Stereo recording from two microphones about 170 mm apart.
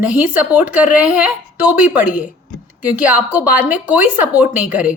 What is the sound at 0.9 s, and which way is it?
A woman's voice, 10° right (ahead or behind).